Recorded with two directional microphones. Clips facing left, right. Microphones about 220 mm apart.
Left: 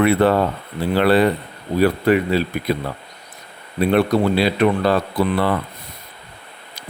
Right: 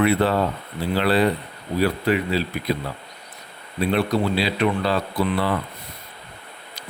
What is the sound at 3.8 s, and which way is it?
Speech, 55° left (ahead or behind).